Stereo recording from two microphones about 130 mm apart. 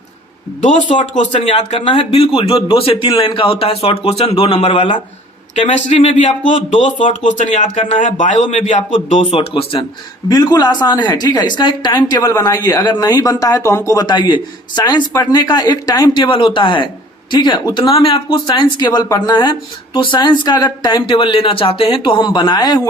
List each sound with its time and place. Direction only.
1.1 s speech: 65° left (ahead or behind)
1.8 s a man's voice: 45° left (ahead or behind)
5.5 s speech: 65° left (ahead or behind); by 9.6 s 50° left (ahead or behind)
10.2 s speech: 30° left (ahead or behind)